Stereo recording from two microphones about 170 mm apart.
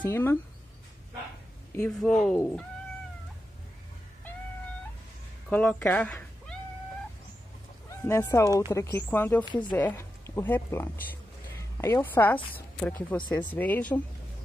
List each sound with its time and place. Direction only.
0.0 s speech: 10° left (ahead or behind)
1.8 s speech: 5° left (ahead or behind)
5.5 s speech: 10° left (ahead or behind)
8.0 s speech: 15° left (ahead or behind)
9.4 s speech: 25° left (ahead or behind)
9.8 s a woman's voice: 10° left (ahead or behind)